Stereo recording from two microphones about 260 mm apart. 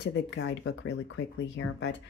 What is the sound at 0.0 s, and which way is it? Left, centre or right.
Speech, left.